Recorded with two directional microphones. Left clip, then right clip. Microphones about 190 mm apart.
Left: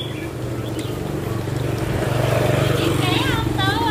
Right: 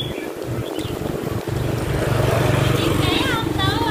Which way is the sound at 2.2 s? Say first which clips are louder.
Left 1 dB; 40° right (ahead or behind).